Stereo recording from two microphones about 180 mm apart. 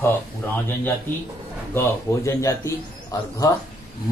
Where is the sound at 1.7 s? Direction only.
15° left (ahead or behind).